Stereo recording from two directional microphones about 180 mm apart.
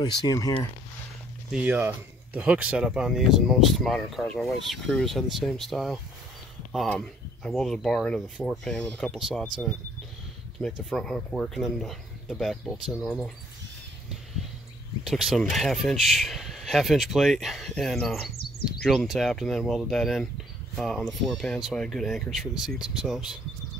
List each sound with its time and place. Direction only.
0.0 s speech: 25° left (ahead or behind)
1.5 s speech: 10° right (ahead or behind); by 9.8 s 5° left (ahead or behind)
10.9 s speech: 5° left (ahead or behind)
15.0 s speech: centre (ahead or behind)